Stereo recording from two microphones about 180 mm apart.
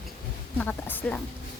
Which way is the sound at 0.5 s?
10° left (ahead or behind).